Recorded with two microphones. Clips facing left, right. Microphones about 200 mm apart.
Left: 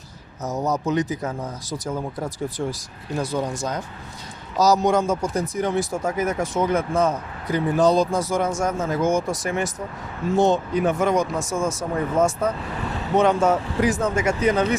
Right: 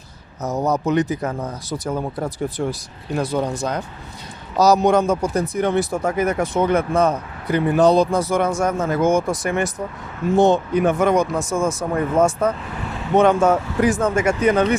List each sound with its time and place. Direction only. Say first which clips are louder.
0.4 s speech: right 3 dB; 60° right (ahead or behind)